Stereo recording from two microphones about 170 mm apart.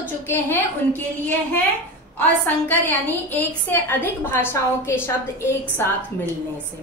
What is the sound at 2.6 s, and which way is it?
A woman's voice, 10° left (ahead or behind).